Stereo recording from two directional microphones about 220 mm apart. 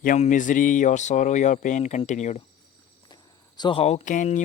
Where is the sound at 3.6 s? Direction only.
25° left (ahead or behind).